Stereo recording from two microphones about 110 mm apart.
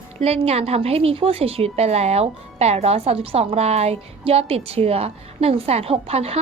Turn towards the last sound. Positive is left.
turn(degrees=-65)  # may be behind; listen again after turning